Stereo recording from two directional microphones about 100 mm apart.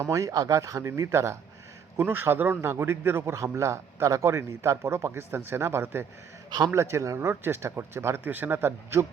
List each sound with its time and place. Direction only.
0.0 s a man's voice: 30° right (ahead or behind)